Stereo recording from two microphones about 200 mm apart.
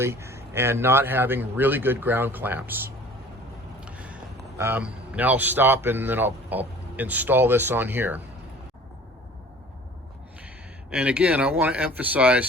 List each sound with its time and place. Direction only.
0.0 s a man's voice: 15° right (ahead or behind)
10.9 s a man's voice: 5° right (ahead or behind)